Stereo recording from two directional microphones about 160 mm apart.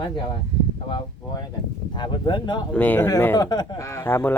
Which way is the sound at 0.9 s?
30° left (ahead or behind).